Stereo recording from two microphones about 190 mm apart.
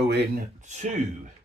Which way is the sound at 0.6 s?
40° right (ahead or behind).